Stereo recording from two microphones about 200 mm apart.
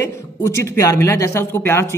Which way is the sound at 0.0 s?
15° left (ahead or behind).